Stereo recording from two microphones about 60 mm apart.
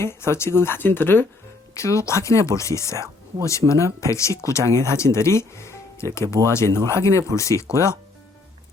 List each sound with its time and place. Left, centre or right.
0.0 s speech: left
1.7 s speech: left
3.6 s speech: right
4.0 s speech: left